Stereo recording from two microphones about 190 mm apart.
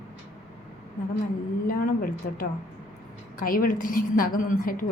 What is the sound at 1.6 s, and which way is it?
A woman's voice, 50° left (ahead or behind).